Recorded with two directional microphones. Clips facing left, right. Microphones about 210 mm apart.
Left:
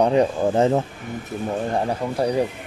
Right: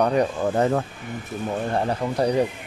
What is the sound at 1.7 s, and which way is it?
Speech, 5° left (ahead or behind).